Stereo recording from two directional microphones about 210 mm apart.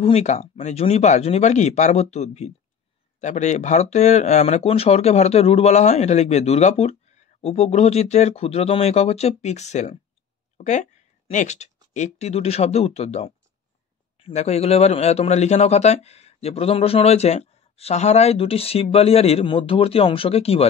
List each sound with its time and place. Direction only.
0.0 s a man's voice: 30° left (ahead or behind)